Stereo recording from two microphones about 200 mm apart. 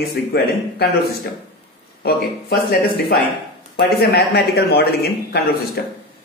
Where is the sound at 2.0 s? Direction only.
50° left (ahead or behind).